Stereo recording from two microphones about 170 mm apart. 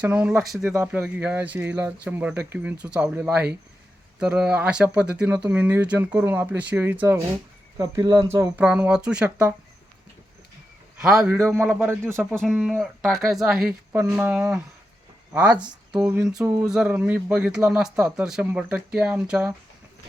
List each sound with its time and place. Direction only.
0.0 s speech: 10° right (ahead or behind)
11.1 s speech: 5° right (ahead or behind)
11.7 s speech: 10° right (ahead or behind)
12.0 s speech: 5° left (ahead or behind)